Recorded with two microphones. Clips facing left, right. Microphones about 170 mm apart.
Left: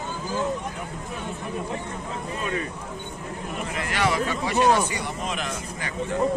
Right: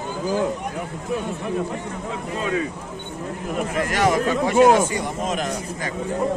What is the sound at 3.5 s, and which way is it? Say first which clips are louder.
Speech: right 7 dB; 45° right (ahead or behind).